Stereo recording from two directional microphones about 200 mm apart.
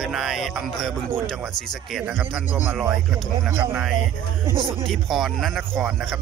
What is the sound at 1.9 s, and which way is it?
Speech, 5° right (ahead or behind).